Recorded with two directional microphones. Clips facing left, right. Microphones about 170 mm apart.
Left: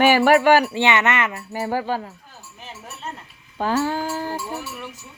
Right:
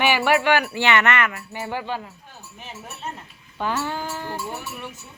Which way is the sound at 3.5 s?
40° left (ahead or behind).